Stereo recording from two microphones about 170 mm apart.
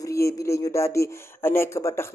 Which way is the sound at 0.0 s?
20° left (ahead or behind).